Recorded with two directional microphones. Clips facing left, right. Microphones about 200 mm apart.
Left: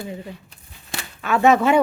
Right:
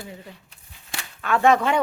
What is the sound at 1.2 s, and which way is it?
Speech, 5° left (ahead or behind).